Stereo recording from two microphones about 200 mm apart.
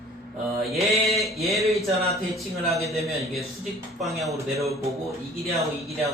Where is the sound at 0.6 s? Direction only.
Centre (ahead or behind).